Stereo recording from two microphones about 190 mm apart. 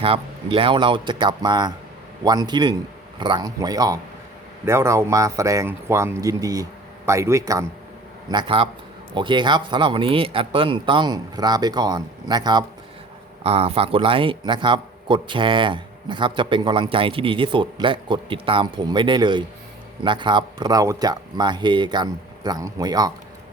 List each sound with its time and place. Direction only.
0.0 s speech: 30° right (ahead or behind)
13.4 s speech: 30° right (ahead or behind)